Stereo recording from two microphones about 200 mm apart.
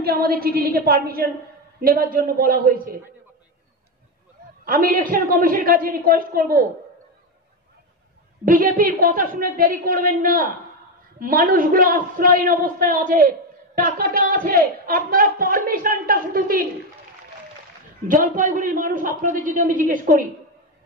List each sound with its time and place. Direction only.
0.0 s speech: 50° right (ahead or behind)
4.6 s speech: 45° right (ahead or behind)
8.5 s speech: 45° right (ahead or behind)
18.0 s a man's voice: 40° right (ahead or behind)